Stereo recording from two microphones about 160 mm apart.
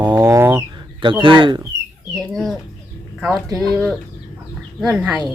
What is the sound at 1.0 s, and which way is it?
Speech, 30° right (ahead or behind).